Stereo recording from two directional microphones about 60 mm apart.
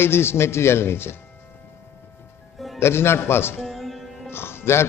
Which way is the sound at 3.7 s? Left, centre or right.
Centre.